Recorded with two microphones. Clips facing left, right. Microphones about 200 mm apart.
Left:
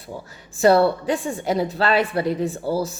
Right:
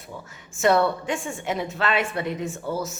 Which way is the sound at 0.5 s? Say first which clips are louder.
Left 5 dB; 35° left (ahead or behind).